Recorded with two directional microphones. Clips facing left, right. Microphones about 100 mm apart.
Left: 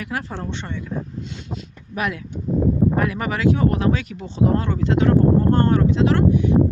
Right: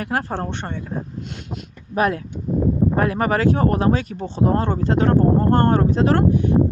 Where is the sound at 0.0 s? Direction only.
50° right (ahead or behind).